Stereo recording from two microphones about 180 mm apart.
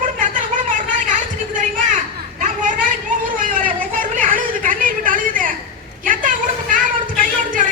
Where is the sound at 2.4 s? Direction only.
45° right (ahead or behind).